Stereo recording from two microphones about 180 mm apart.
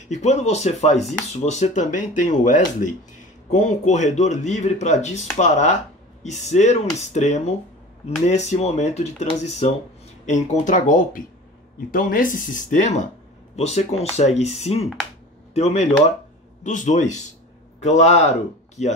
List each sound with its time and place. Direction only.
0.1 s speech: 40° left (ahead or behind)